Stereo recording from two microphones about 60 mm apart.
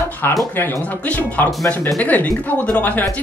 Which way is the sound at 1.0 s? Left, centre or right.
Left.